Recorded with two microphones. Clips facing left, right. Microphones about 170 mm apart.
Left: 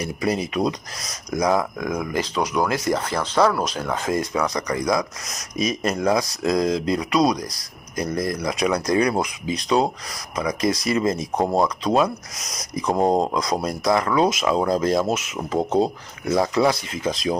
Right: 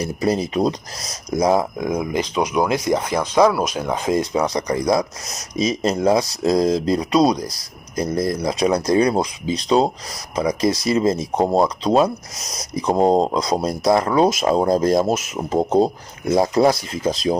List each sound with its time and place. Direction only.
0.0 s speech: 35° right (ahead or behind)
10.3 s rub: 30° right (ahead or behind)